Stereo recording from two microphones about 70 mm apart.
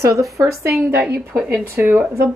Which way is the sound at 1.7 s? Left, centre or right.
Right.